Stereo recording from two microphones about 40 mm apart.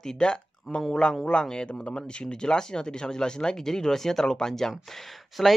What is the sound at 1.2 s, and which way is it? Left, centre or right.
A woman's voice, centre.